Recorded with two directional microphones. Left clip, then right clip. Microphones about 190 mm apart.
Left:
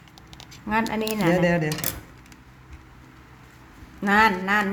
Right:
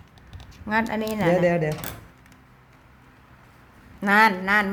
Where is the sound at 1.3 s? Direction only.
45° right (ahead or behind).